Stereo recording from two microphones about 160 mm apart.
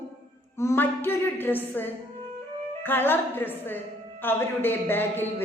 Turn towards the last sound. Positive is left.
turn(degrees=15)  # may be behind; listen again after turning